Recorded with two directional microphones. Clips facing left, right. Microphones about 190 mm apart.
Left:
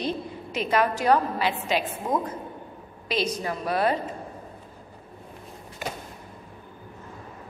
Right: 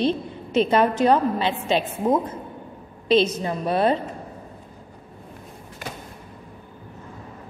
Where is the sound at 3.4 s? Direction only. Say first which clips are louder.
Right 4 dB; 25° right (ahead or behind).